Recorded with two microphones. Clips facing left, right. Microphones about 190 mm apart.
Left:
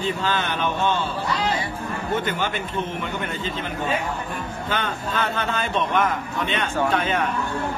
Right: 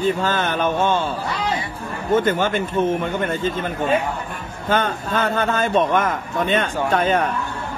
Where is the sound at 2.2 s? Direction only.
50° right (ahead or behind).